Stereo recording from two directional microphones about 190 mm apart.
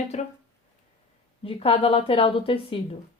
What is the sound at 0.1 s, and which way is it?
Speech, 35° left (ahead or behind).